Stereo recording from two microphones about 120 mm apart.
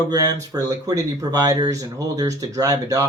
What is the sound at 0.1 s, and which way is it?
Speech, 30° right (ahead or behind).